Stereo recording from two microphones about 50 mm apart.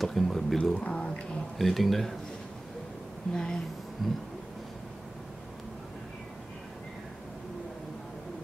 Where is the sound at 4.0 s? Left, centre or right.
Centre.